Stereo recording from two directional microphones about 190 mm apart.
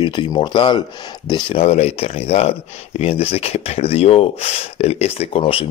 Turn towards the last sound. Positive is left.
turn(degrees=30)  # may be behind; listen again after turning